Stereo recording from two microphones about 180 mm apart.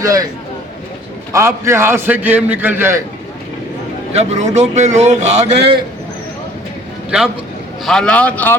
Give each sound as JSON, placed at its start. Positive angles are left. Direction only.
{"t": 0.0, "sound": "speech", "side_deg": -20}
{"t": 1.3, "sound": "a man's voice", "side_deg": -15}
{"t": 4.1, "sound": "a man's voice", "side_deg": -40}
{"t": 7.9, "sound": "a man's voice", "side_deg": 5}